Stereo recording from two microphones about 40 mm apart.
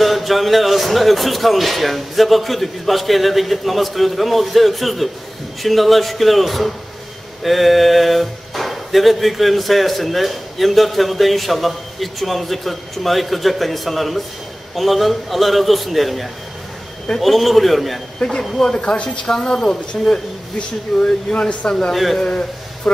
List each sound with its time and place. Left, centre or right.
0.0 s a woman's voice: centre
18.8 s speech: left
19.2 s a woman's voice: centre
20.5 s speech: left
21.9 s speech: centre